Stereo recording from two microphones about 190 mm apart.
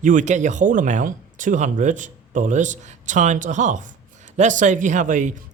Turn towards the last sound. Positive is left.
turn(degrees=-40)  # may be behind; listen again after turning